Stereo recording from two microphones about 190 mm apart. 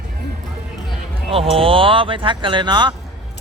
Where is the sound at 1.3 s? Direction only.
30° right (ahead or behind).